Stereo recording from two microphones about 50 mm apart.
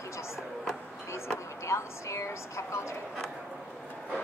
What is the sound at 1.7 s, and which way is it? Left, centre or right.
A woman's voice, left.